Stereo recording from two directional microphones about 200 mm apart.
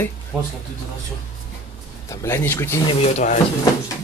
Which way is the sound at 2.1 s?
15° left (ahead or behind).